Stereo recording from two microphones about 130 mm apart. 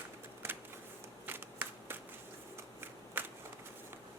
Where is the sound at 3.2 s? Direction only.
15° right (ahead or behind).